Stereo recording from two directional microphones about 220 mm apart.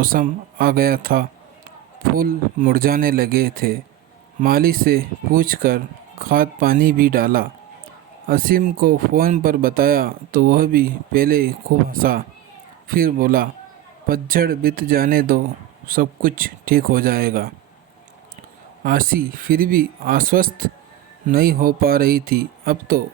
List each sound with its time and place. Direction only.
0.0 s speech: 40° right (ahead or behind)
18.8 s speech: 40° right (ahead or behind)